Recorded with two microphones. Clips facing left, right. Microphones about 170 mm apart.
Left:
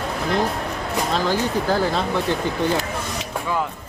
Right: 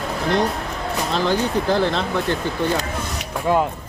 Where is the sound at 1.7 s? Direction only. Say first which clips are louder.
Right 2 dB; 10° left (ahead or behind).